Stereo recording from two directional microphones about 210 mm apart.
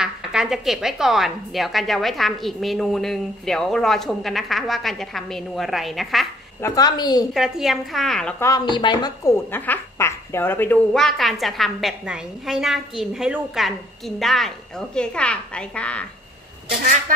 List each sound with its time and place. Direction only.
0.0 s a woman's voice: 5° right (ahead or behind)
6.6 s a woman's voice: 15° left (ahead or behind)
7.3 s a woman's voice: centre (ahead or behind)